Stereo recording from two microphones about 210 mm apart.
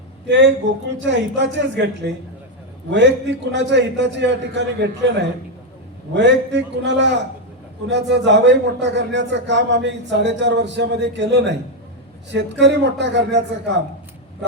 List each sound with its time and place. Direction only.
0.3 s a man's voice: 55° right (ahead or behind)
2.9 s a man's voice: 55° right (ahead or behind)
6.1 s a man's voice: 55° right (ahead or behind)